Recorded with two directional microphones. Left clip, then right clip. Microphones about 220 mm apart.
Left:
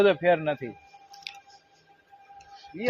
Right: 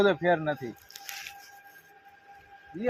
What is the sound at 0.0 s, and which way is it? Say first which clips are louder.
Speech: left 3 dB; 15° left (ahead or behind).